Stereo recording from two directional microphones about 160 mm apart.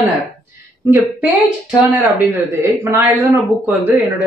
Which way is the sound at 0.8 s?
15° right (ahead or behind).